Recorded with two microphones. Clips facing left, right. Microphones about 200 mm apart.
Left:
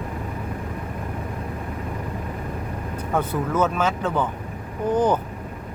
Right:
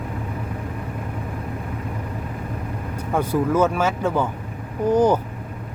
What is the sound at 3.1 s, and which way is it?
Speech, 10° right (ahead or behind).